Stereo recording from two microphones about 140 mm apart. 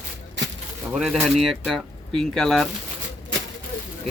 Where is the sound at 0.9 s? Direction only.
Centre (ahead or behind).